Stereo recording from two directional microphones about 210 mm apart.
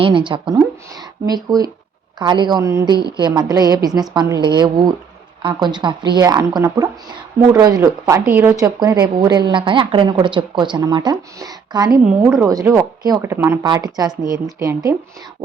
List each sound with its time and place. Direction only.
0.0 s speech: 25° right (ahead or behind)